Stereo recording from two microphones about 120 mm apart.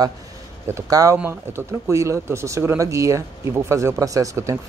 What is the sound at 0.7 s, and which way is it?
Speech, 25° right (ahead or behind).